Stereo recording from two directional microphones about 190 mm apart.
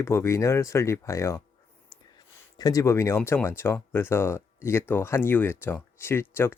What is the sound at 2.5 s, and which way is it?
Speech, 20° left (ahead or behind).